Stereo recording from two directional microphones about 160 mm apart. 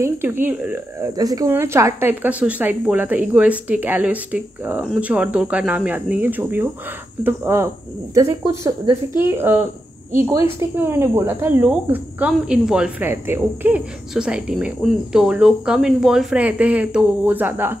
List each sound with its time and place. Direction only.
0.0 s speech: 15° right (ahead or behind)
1.1 s speech: 20° right (ahead or behind)